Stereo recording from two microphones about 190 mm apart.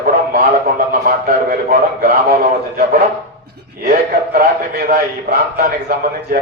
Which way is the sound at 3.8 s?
50° right (ahead or behind).